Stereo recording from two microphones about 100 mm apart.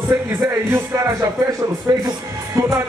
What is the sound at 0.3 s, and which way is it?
A man's voice, 30° right (ahead or behind).